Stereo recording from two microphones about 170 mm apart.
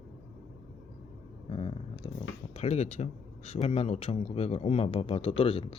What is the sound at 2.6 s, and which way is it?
A man's voice, 40° left (ahead or behind).